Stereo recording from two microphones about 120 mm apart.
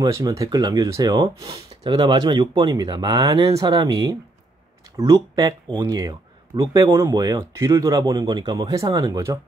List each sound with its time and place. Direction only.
0.0 s speech: 30° right (ahead or behind)
1.5 s speech: 45° right (ahead or behind); by 9.4 s 30° right (ahead or behind)